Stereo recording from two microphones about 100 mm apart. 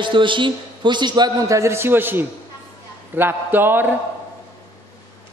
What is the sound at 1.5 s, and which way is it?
A woman's voice, 30° right (ahead or behind).